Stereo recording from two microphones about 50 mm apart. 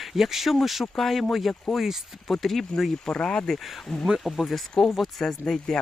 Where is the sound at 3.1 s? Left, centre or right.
Centre.